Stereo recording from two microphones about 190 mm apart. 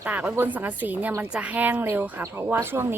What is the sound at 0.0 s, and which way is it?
A woman's voice, 5° right (ahead or behind).